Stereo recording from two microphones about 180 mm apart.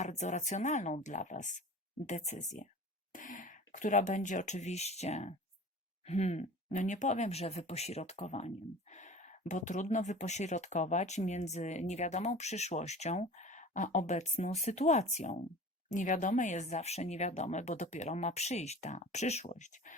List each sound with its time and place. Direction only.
0.0 s speech: 40° left (ahead or behind)